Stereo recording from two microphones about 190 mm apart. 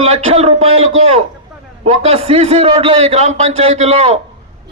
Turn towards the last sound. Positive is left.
turn(degrees=-35)  # may be behind; listen again after turning